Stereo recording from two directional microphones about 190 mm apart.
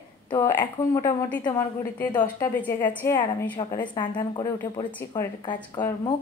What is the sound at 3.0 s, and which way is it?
Speech, 15° left (ahead or behind).